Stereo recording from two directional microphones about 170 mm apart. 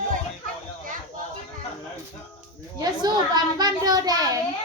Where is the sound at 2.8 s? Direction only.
25° right (ahead or behind).